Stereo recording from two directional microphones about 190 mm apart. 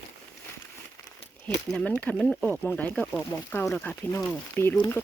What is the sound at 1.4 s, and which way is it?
Speech, 5° left (ahead or behind).